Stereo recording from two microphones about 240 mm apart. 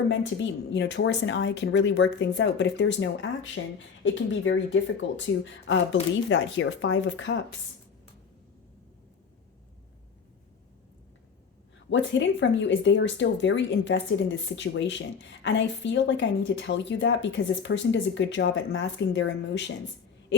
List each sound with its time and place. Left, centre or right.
0.1 s speech: left
11.9 s speech: left